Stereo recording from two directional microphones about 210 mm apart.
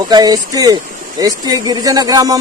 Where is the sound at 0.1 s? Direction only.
20° right (ahead or behind).